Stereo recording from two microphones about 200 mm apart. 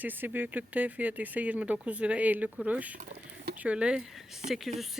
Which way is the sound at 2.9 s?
45° right (ahead or behind).